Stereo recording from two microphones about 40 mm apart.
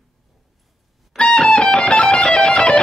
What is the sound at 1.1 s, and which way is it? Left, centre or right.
Music, centre.